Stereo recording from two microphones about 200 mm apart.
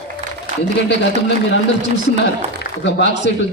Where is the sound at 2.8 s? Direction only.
60° left (ahead or behind).